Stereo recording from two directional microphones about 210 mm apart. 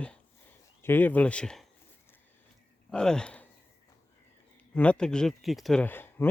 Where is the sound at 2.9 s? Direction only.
5° left (ahead or behind).